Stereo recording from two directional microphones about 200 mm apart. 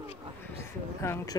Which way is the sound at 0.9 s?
15° left (ahead or behind).